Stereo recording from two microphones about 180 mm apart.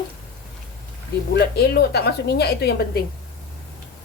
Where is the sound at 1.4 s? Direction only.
65° left (ahead or behind).